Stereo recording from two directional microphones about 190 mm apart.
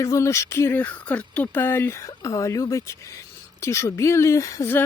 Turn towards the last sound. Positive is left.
turn(degrees=15)  # may be behind; listen again after turning